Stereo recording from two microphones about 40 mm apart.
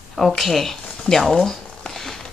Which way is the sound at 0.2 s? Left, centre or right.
Centre.